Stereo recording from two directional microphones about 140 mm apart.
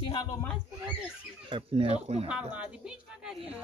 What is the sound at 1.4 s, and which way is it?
Speech, 40° right (ahead or behind).